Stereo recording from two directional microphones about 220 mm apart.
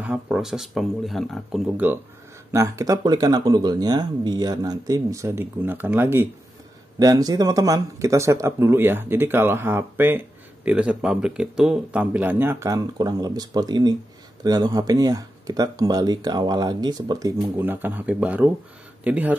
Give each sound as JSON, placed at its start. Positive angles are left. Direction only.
{"t": 0.0, "sound": "speech", "side_deg": -5}